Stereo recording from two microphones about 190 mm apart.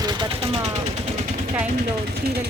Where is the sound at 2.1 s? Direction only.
55° right (ahead or behind).